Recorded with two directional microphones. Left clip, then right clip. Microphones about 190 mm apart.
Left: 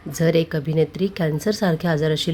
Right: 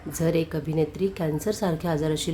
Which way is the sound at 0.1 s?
20° left (ahead or behind).